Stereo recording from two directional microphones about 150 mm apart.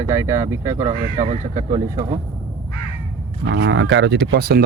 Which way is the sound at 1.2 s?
50° right (ahead or behind).